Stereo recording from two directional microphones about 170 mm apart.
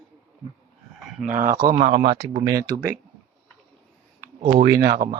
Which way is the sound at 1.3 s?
50° right (ahead or behind).